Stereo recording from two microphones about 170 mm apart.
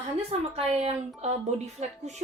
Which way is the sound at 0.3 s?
40° right (ahead or behind).